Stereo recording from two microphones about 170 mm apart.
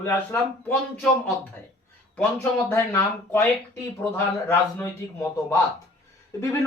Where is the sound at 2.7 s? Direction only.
15° left (ahead or behind).